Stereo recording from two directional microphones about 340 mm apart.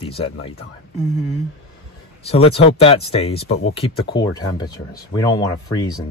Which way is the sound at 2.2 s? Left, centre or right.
Centre.